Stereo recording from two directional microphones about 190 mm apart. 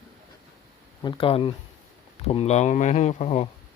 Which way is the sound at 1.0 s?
25° left (ahead or behind).